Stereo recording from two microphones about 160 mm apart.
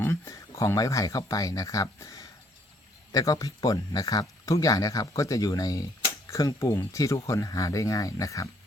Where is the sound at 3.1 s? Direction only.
20° left (ahead or behind).